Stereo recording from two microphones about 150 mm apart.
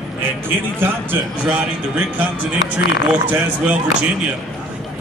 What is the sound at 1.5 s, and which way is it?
Speech, 10° right (ahead or behind).